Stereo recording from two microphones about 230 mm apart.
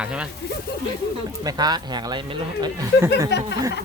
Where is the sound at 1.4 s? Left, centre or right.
Centre.